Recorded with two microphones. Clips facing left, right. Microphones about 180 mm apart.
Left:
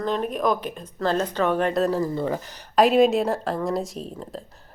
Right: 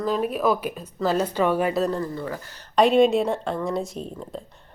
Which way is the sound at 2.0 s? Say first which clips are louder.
Left 5 dB; 20° left (ahead or behind).